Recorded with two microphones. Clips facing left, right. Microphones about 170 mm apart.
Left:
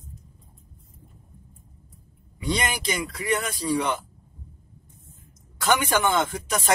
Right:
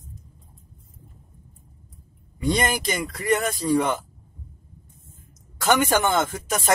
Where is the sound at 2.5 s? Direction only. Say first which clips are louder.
Right 4 dB; 45° right (ahead or behind).